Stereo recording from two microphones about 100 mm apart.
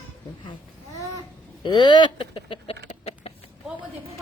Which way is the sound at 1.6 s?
50° left (ahead or behind).